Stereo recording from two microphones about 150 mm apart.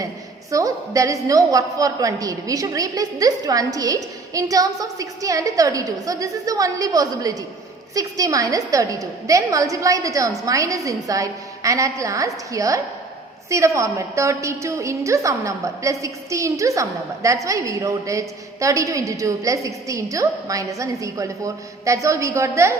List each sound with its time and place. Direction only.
0.5 s a woman's voice: 20° right (ahead or behind)